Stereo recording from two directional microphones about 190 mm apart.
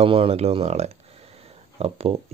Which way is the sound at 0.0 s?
30° right (ahead or behind).